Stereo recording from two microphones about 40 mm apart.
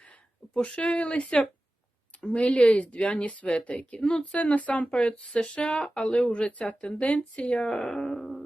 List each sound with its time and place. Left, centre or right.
0.5 s speech: left
4.4 s speech: left
7.7 s music: centre